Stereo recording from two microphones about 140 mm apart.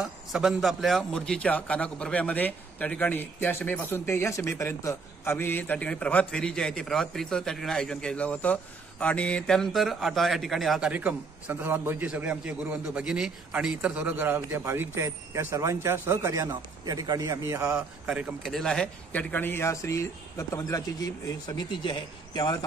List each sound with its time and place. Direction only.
0.0 s a man's voice: 5° right (ahead or behind); by 17.7 s 20° right (ahead or behind)
17.7 s a man's voice: 5° right (ahead or behind); by 22.7 s 30° left (ahead or behind)